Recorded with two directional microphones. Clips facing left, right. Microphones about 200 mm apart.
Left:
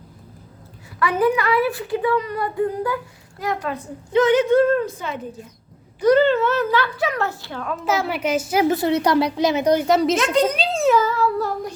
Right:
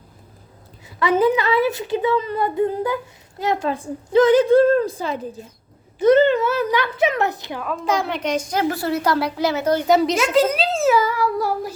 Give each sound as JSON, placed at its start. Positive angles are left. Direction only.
{"t": 0.9, "sound": "a woman's voice", "side_deg": -25}
{"t": 6.0, "sound": "a woman's voice", "side_deg": -20}
{"t": 7.6, "sound": "a child's voice", "side_deg": 0}
{"t": 8.7, "sound": "a woman's voice", "side_deg": 20}
{"t": 9.8, "sound": "a child's voice", "side_deg": 0}